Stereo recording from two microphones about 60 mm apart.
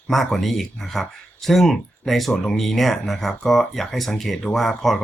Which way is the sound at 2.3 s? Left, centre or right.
Centre.